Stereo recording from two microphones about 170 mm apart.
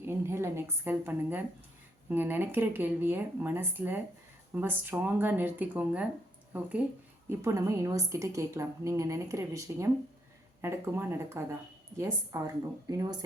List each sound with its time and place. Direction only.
0.0 s a woman's voice: 15° right (ahead or behind)